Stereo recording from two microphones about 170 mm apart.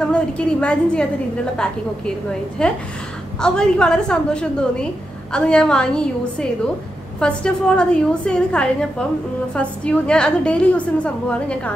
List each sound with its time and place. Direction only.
0.0 s a woman's voice: 5° left (ahead or behind)